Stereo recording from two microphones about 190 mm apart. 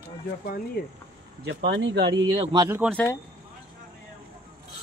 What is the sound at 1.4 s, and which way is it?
Speech, 65° right (ahead or behind).